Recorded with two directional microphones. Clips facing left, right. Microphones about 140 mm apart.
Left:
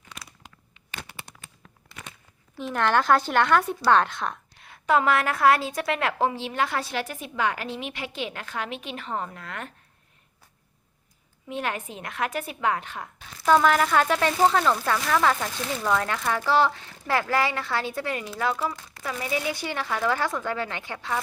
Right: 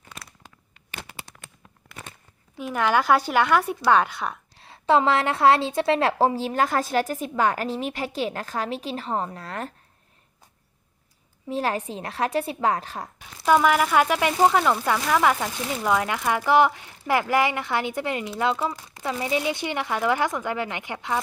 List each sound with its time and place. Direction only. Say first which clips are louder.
1.8 s a sound: right 3 dB; centre (ahead or behind)
2.6 s speech: right 1 dB; 5° right (ahead or behind)
4.5 s a woman's voice: right 3 dB; 30° right (ahead or behind)
11.4 s a woman's voice: right 4 dB; 35° right (ahead or behind)
13.1 s speech: even; 10° right (ahead or behind)